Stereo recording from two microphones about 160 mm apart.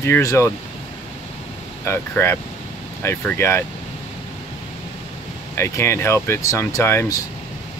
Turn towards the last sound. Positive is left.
turn(degrees=20)  # may be behind; listen again after turning